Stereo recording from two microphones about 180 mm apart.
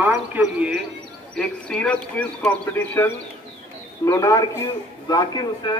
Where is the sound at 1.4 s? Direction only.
5° left (ahead or behind); by 5.7 s 25° left (ahead or behind).